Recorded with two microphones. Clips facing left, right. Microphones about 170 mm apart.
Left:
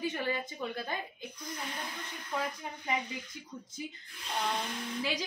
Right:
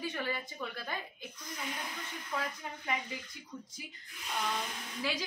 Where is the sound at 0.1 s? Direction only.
20° left (ahead or behind).